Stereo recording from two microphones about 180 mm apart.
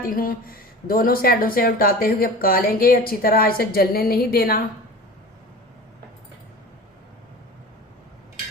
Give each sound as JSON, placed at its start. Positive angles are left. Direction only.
{"t": 0.0, "sound": "speech", "side_deg": 50}